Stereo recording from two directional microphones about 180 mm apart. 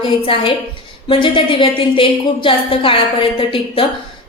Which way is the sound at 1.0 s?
30° left (ahead or behind).